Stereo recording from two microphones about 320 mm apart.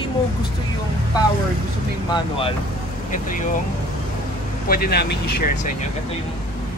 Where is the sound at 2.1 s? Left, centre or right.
Centre.